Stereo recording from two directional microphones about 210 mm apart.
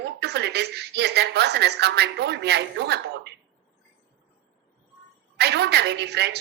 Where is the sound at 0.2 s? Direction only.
55° right (ahead or behind).